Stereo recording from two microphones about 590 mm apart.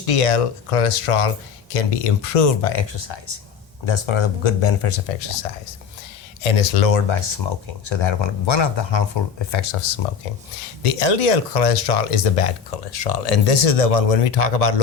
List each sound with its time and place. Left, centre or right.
0.0 s speech: left
2.8 s speech: left
6.4 s speech: left
7.9 s speech: left
10.8 s speech: left